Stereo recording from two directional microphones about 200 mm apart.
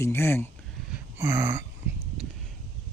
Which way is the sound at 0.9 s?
10° right (ahead or behind).